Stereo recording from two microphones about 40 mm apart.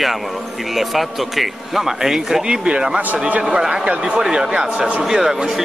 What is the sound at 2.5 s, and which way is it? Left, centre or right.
Speech, right.